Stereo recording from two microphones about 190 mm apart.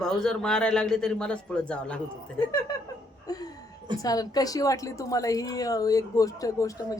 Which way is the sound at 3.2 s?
20° left (ahead or behind).